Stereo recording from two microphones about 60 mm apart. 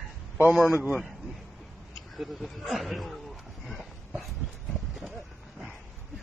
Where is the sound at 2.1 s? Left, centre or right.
Centre.